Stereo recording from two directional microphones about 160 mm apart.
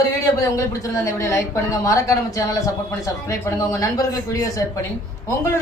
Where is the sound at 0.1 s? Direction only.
20° left (ahead or behind).